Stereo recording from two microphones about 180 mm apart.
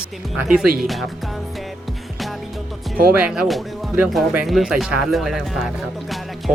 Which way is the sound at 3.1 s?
5° right (ahead or behind).